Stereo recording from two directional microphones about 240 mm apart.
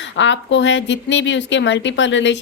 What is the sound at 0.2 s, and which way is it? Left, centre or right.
A woman's voice, left.